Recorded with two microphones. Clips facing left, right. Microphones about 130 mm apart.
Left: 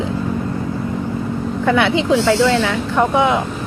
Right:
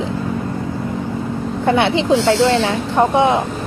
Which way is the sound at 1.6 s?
30° right (ahead or behind).